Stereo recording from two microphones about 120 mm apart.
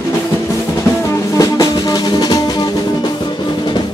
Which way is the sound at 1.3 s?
30° left (ahead or behind).